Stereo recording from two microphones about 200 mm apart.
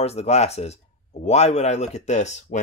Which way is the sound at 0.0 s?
30° left (ahead or behind).